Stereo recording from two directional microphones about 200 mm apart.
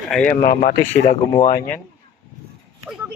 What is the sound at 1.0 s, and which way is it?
Speech, 30° left (ahead or behind).